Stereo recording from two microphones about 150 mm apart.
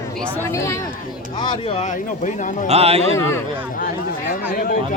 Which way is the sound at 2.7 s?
45° right (ahead or behind).